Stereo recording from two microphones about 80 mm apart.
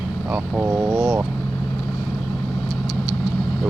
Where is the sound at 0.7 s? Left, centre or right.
Right.